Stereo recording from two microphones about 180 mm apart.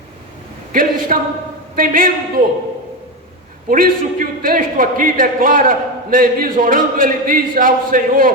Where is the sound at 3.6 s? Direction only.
50° right (ahead or behind).